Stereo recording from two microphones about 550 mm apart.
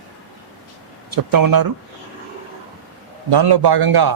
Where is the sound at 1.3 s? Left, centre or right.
Right.